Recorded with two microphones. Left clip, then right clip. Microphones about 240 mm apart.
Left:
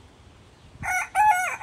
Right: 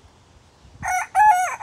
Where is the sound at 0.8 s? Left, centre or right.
Centre.